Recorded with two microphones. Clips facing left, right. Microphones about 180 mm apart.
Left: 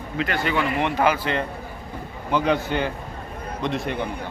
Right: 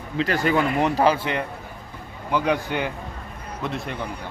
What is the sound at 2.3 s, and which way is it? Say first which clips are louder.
Speech: left 1 dB; 15° right (ahead or behind).